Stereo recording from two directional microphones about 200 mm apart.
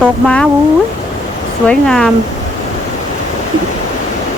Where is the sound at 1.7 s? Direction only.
5° left (ahead or behind).